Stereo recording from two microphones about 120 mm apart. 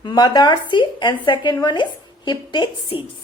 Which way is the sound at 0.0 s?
40° left (ahead or behind).